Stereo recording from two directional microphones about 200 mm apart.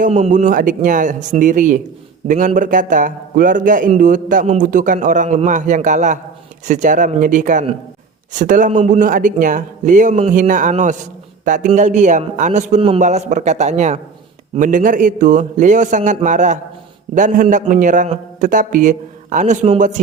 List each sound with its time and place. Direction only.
0.0 s a man's voice: 40° right (ahead or behind)